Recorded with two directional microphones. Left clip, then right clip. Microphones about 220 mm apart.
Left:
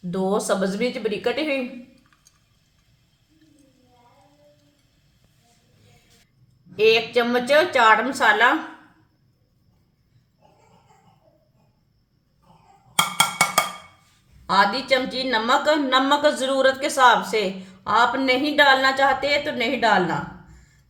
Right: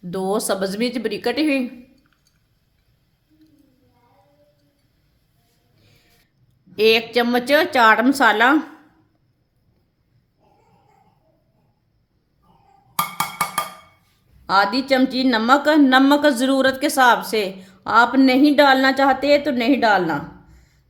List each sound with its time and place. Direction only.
0.1 s a woman's voice: 45° right (ahead or behind)
6.7 s a woman's voice: 45° right (ahead or behind)
14.4 s a woman's voice: 45° right (ahead or behind)